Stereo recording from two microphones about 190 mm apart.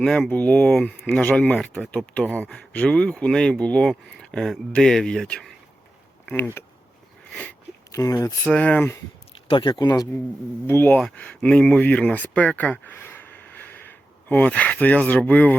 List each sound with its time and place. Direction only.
0.0 s speech: 5° left (ahead or behind)
7.9 s speech: 15° left (ahead or behind)
8.4 s speech: 5° left (ahead or behind)
9.3 s speech: 25° left (ahead or behind); by 15.5 s 10° left (ahead or behind)